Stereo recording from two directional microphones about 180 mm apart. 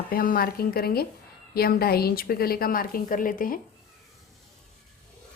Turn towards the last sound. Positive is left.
turn(degrees=50)  # may be behind; listen again after turning